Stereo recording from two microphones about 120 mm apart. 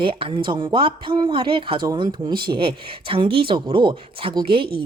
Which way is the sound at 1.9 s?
35° right (ahead or behind).